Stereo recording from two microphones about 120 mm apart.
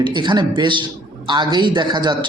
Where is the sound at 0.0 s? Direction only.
40° right (ahead or behind).